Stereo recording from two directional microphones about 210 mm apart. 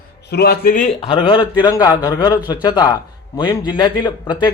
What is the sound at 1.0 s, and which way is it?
A man's voice, 25° left (ahead or behind).